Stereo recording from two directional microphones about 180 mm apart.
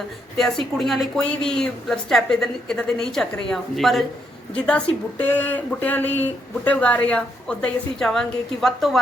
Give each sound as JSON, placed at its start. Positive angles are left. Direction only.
{"t": 0.3, "sound": "speech", "side_deg": 0}